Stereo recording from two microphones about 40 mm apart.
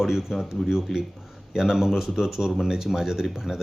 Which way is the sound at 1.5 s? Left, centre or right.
Centre.